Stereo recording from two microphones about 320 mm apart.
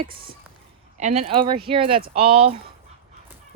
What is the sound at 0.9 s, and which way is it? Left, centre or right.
Speech, right.